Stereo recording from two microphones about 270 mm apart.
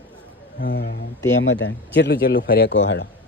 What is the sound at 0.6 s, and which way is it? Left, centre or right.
A man's voice, left.